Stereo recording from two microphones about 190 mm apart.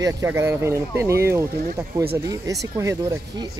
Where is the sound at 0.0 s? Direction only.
15° right (ahead or behind).